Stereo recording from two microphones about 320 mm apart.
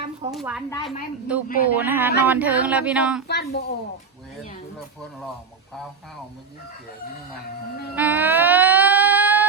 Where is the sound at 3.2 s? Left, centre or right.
Left.